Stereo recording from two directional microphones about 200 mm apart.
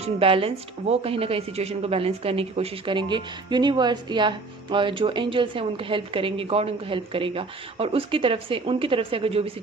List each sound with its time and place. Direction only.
0.0 s a woman's voice: 25° right (ahead or behind)